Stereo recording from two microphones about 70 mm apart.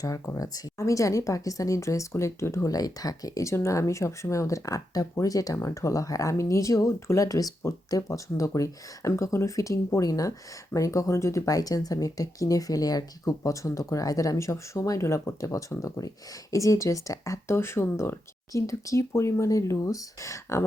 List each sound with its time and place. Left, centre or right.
0.0 s speech: left
2.6 s speech: left
3.5 s speech: left
17.5 s speech: left
18.5 s speech: left